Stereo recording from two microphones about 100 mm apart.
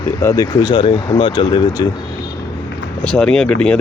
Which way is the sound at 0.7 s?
60° left (ahead or behind).